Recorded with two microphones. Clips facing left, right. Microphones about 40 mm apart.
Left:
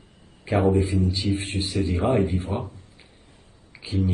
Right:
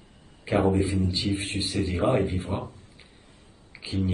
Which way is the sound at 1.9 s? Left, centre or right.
Right.